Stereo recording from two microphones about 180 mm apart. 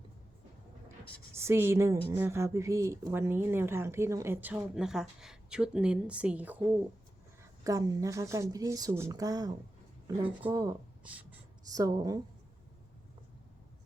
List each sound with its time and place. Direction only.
1.4 s a woman's voice: 15° right (ahead or behind)
7.6 s a woman's voice: 20° right (ahead or behind)
11.0 s writing: 10° right (ahead or behind)
11.7 s a woman's voice: 20° right (ahead or behind)